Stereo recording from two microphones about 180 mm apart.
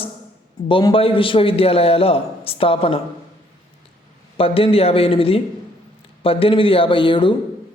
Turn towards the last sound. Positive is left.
turn(degrees=30)  # may be behind; listen again after turning